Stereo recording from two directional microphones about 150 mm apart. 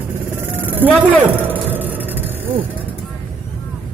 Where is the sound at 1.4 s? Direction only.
15° right (ahead or behind).